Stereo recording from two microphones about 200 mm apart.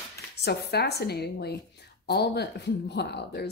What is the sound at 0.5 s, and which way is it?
Speech, 55° left (ahead or behind).